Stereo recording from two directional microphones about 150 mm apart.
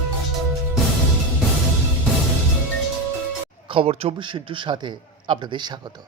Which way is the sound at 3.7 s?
40° right (ahead or behind).